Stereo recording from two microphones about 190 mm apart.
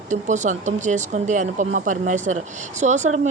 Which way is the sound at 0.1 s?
40° right (ahead or behind).